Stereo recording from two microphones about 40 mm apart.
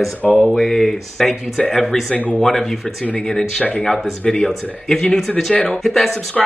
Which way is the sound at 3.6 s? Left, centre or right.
Left.